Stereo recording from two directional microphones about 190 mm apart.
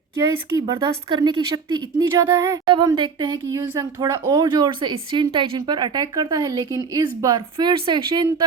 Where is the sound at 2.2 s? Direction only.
15° right (ahead or behind).